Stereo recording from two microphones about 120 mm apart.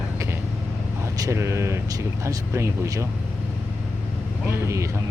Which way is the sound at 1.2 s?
25° right (ahead or behind).